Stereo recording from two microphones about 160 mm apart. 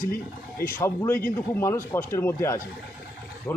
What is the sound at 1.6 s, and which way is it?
Speech, 15° left (ahead or behind).